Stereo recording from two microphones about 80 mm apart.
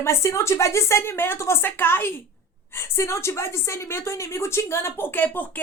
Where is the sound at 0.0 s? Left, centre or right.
Left.